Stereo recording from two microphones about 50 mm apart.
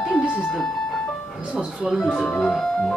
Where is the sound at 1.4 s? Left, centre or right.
Centre.